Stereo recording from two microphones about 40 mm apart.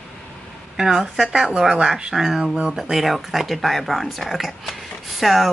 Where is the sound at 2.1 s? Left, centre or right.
Centre.